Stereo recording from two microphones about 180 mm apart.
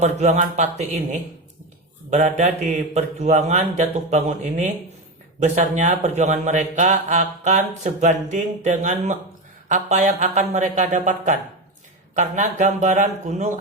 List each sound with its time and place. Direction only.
0.0 s a man's voice: 40° right (ahead or behind)